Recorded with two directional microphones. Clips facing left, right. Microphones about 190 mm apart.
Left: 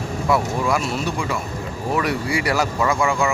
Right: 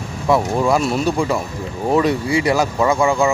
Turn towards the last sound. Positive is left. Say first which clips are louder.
# right 4 dB
turn(degrees=-20)  # may be behind; listen again after turning